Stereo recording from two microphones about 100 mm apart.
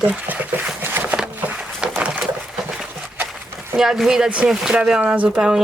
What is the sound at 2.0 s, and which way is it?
Pigeon, 15° right (ahead or behind).